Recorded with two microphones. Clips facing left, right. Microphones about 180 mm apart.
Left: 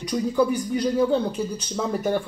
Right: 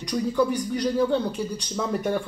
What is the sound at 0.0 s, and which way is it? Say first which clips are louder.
A man's voice: left 1 dB; 5° left (ahead or behind).